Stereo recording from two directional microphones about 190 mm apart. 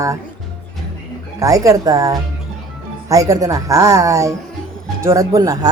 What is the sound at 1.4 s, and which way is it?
Speech, 15° right (ahead or behind).